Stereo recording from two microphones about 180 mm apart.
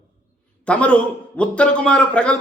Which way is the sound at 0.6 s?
5° left (ahead or behind).